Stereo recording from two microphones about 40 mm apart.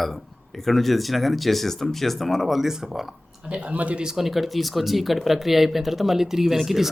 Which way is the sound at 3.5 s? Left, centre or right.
Right.